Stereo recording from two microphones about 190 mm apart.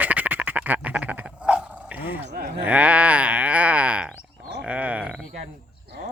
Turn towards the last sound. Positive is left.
turn(degrees=-5)  # may be behind; listen again after turning